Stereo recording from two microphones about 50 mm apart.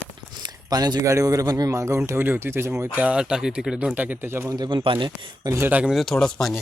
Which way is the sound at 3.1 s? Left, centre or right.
Centre.